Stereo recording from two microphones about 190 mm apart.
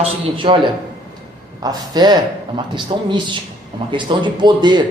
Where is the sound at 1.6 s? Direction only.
20° right (ahead or behind).